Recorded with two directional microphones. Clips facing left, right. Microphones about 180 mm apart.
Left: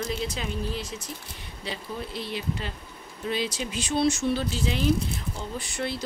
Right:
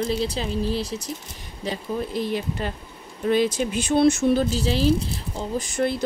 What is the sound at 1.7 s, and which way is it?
Speech, 45° right (ahead or behind).